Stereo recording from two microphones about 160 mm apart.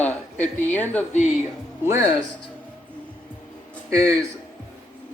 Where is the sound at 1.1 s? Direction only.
50° left (ahead or behind).